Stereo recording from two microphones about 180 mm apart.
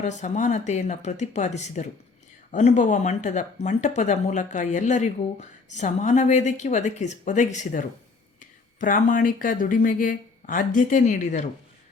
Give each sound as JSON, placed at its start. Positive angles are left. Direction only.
{"t": 0.0, "sound": "speech", "side_deg": 40}